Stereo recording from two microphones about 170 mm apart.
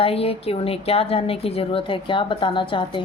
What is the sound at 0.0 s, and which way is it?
A woman's voice, 35° left (ahead or behind).